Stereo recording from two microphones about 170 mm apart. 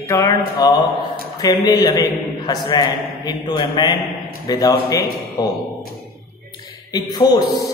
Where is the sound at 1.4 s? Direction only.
25° left (ahead or behind).